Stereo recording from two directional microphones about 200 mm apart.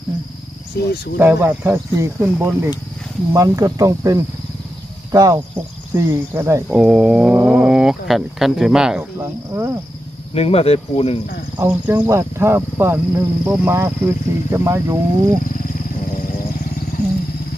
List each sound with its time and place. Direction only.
0.8 s speech: 55° left (ahead or behind)
1.2 s speech: 10° right (ahead or behind)
9.1 s speech: 15° right (ahead or behind)
10.3 s speech: 30° left (ahead or behind)
11.5 s speech: 10° right (ahead or behind)